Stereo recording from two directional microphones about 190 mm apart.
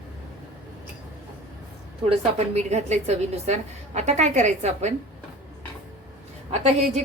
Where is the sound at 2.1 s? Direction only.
35° right (ahead or behind).